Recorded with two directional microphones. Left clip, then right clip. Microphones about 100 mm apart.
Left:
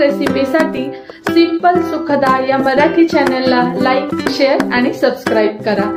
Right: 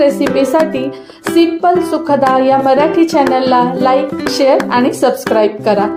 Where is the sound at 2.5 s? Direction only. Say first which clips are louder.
Right 2 dB; 50° right (ahead or behind).